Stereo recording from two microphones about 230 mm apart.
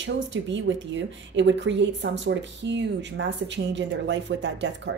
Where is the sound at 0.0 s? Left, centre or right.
Right.